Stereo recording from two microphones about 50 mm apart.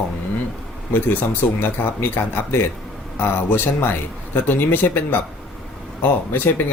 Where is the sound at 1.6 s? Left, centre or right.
Left.